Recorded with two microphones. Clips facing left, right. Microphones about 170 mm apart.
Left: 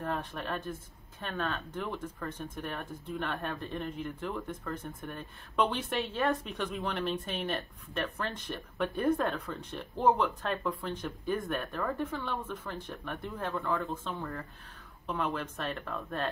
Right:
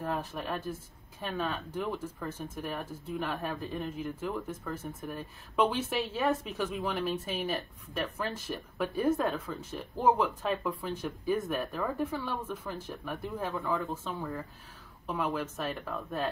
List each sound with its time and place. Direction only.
0.0 s speech: 5° right (ahead or behind)